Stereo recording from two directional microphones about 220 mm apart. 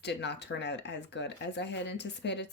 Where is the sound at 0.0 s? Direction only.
50° left (ahead or behind).